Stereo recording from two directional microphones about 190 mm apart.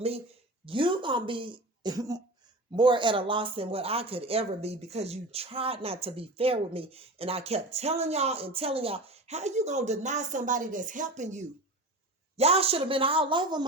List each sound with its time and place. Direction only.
0.6 s speech: 25° right (ahead or behind)